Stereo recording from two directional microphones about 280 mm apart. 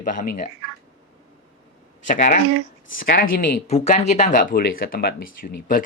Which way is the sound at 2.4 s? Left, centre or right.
Right.